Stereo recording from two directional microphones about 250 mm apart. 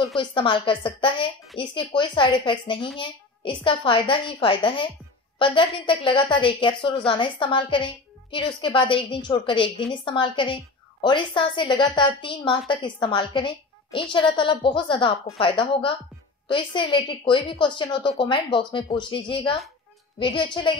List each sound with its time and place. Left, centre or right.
0.2 s a woman's voice: centre